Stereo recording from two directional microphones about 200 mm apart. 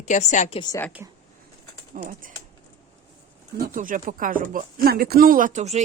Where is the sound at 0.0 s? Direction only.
35° left (ahead or behind).